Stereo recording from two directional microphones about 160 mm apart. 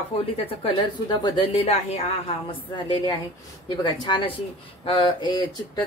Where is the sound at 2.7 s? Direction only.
30° left (ahead or behind).